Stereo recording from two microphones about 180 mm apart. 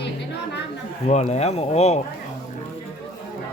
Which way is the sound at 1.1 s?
40° left (ahead or behind).